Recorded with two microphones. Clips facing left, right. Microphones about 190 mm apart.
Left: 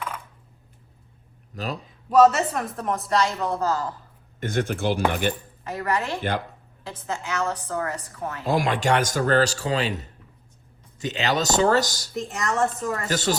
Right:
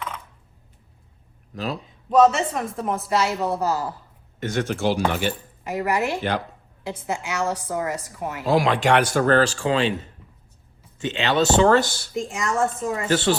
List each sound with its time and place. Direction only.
2.0 s a woman's voice: 5° left (ahead or behind); by 3.9 s 10° right (ahead or behind)
4.4 s speech: 55° left (ahead or behind)
5.6 s a woman's voice: 10° right (ahead or behind)
8.4 s speech: 50° left (ahead or behind)
12.3 s speech: centre (ahead or behind)
13.1 s speech: 40° left (ahead or behind)